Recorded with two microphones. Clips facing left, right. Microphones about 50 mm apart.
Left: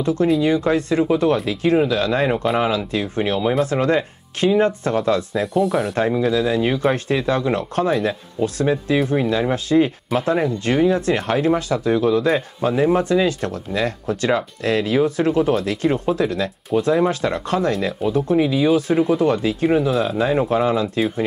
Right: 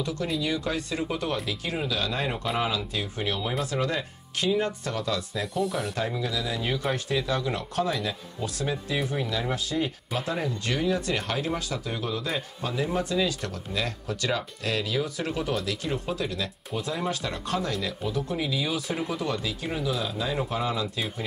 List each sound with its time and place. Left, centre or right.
0.0 s speech: left
5.4 s speech: centre
5.9 s speech: left
17.1 s speech: left
19.9 s speech: left